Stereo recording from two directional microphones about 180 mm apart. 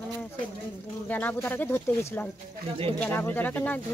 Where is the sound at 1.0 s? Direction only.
10° left (ahead or behind).